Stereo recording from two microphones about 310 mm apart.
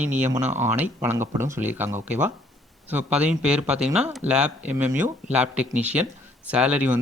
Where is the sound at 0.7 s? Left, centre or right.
Centre.